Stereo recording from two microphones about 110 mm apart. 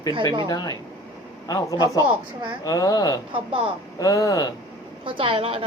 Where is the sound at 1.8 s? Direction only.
30° left (ahead or behind).